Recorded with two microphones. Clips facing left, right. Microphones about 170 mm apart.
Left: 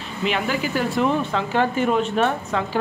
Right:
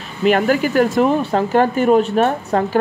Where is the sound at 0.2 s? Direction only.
45° right (ahead or behind).